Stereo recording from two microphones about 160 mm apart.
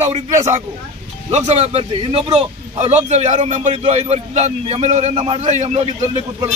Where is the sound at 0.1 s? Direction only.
45° right (ahead or behind).